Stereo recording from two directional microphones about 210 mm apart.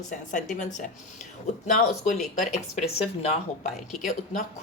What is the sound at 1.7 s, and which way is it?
Speech, 35° left (ahead or behind).